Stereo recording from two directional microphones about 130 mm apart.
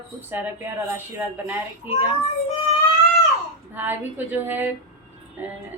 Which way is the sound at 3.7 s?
15° right (ahead or behind).